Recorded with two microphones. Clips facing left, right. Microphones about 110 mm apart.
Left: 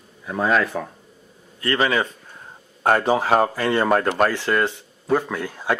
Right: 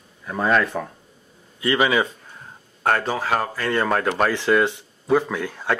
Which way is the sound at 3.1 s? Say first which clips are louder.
Left 5 dB; 20° left (ahead or behind).